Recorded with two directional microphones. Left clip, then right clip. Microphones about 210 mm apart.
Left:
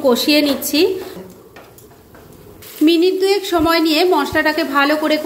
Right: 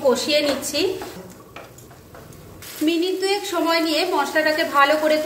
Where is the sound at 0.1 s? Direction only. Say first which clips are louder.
Left 5 dB; 40° left (ahead or behind).